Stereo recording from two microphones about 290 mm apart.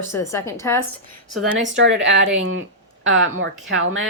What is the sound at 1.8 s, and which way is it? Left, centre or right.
Speech, right.